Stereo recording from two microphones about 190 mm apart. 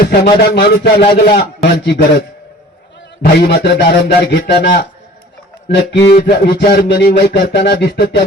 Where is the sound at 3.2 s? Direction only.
60° left (ahead or behind).